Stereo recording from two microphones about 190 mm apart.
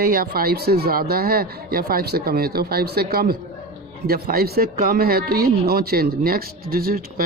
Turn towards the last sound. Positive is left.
turn(degrees=-50)  # may be behind; listen again after turning